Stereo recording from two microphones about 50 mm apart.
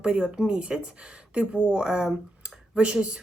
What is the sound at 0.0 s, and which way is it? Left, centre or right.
Speech, centre.